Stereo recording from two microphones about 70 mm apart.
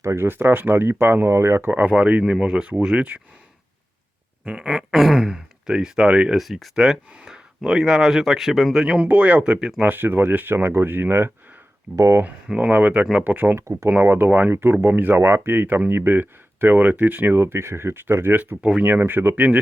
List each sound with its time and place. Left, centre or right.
0.0 s speech: right
1.8 s speech: centre
4.4 s speech: centre
6.4 s speech: centre
9.8 s speech: right
12.5 s speech: right
13.6 s speech: right
14.0 s speech: right
14.3 s speech: right
14.5 s speech: right
18.5 s speech: centre; by 19.5 s right